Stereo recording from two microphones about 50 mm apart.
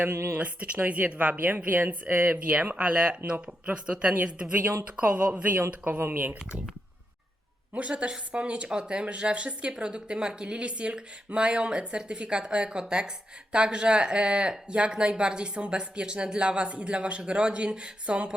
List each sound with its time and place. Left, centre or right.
0.1 s speech: right
0.3 s a woman's voice: right
6.0 s speech: right
7.8 s speech: right